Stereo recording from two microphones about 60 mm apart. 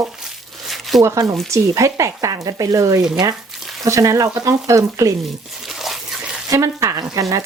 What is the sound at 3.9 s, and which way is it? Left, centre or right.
Speech, right.